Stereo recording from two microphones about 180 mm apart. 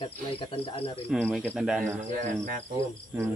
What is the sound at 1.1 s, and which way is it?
Cricket, 5° left (ahead or behind).